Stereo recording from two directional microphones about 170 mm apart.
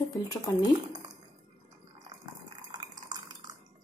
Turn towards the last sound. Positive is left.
turn(degrees=-25)  # may be behind; listen again after turning